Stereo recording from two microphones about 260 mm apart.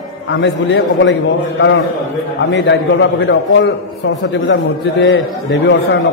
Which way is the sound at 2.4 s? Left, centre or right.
Left.